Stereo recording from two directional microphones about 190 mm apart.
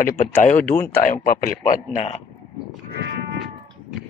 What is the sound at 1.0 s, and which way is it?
Speech, 45° left (ahead or behind).